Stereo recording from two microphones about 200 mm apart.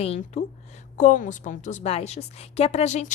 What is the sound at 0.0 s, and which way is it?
A woman's voice, 30° left (ahead or behind).